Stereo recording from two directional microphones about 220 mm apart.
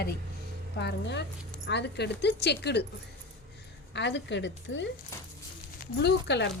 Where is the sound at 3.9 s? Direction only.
50° left (ahead or behind).